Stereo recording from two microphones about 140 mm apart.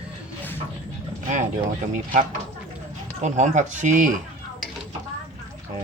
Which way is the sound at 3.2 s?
60° right (ahead or behind).